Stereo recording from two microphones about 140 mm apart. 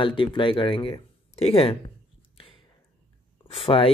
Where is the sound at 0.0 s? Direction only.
35° left (ahead or behind).